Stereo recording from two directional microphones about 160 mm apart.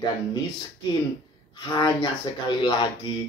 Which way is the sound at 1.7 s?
25° left (ahead or behind).